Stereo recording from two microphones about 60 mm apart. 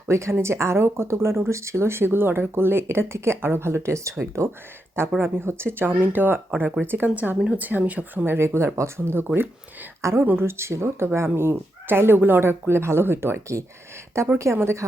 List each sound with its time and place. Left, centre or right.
0.1 s speech: right
5.2 s speech: right
7.1 s speech: right
8.4 s speech: right
9.1 s speech: right
10.0 s speech: right
10.2 s speech: right